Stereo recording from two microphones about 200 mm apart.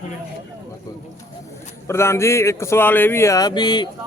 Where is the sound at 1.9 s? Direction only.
15° left (ahead or behind).